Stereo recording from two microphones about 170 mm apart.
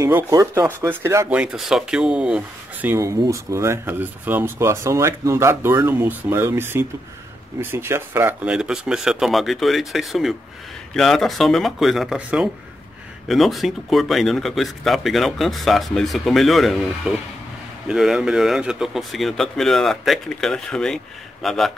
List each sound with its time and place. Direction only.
0.0 s speech: 20° right (ahead or behind)
1.4 s a man's voice: 5° right (ahead or behind)